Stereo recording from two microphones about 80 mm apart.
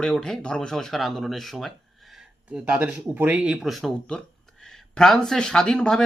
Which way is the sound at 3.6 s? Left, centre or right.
Centre.